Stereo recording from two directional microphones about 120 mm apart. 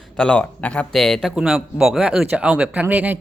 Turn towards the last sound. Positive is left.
turn(degrees=-15)  # may be behind; listen again after turning